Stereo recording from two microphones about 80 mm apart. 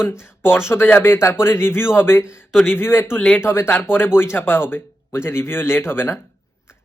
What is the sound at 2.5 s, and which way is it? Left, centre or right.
Speech, centre.